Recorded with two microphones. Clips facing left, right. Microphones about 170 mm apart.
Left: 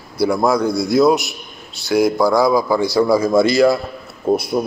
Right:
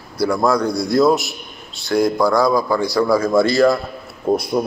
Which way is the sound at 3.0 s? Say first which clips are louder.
Even; 20° left (ahead or behind).